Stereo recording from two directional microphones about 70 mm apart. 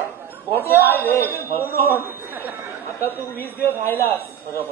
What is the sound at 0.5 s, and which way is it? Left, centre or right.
Speech, left.